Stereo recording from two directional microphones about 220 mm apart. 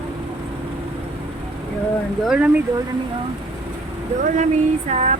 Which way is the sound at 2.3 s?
5° right (ahead or behind).